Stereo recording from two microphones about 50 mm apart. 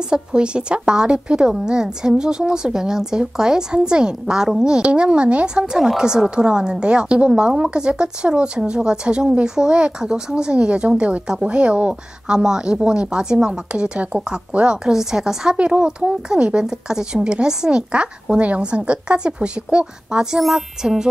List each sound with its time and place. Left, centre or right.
0.1 s a woman's voice: centre
15.0 s a woman's voice: centre
20.3 s speech: centre